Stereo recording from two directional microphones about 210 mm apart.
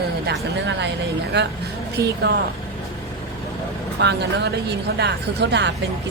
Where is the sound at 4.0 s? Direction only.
50° right (ahead or behind).